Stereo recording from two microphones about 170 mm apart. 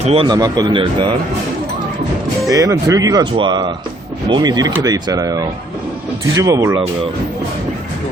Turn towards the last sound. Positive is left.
turn(degrees=-20)  # may be behind; listen again after turning